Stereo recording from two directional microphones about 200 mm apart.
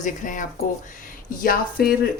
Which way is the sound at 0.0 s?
40° left (ahead or behind).